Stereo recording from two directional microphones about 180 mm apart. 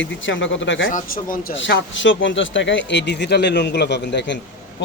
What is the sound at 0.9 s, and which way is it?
Speech, 50° left (ahead or behind).